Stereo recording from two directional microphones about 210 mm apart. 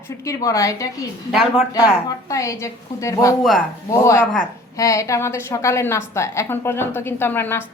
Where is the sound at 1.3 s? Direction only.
Centre (ahead or behind).